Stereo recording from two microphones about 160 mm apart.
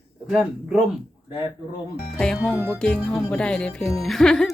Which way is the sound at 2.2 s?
5° left (ahead or behind).